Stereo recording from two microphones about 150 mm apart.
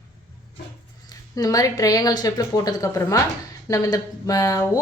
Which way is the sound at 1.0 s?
25° left (ahead or behind).